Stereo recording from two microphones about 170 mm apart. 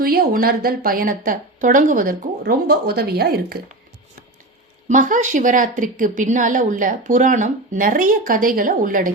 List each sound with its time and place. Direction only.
0.0 s a woman's voice: 60° right (ahead or behind)
4.9 s speech: 50° right (ahead or behind)